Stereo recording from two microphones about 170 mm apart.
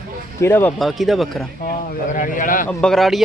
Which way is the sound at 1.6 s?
50° left (ahead or behind).